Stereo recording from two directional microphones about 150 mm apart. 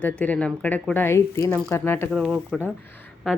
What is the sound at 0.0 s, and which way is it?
Speech, 10° left (ahead or behind).